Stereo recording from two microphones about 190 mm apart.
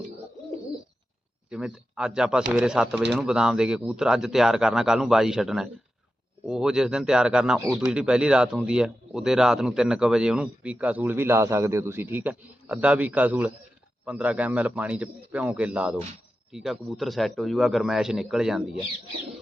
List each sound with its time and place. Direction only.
1.5 s speech: 5° right (ahead or behind)
7.6 s speech: 15° right (ahead or behind)
7.9 s speech: 5° right (ahead or behind)